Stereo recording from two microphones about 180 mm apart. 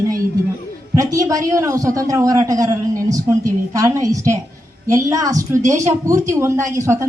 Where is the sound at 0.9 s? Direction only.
20° right (ahead or behind).